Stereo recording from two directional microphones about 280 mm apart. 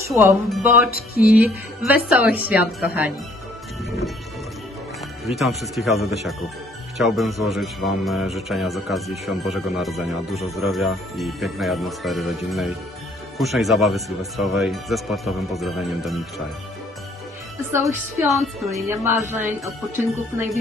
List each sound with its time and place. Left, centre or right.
0.1 s a woman's voice: centre
0.9 s music: left
1.3 s speech: centre
5.2 s speech: centre
17.7 s a woman's voice: centre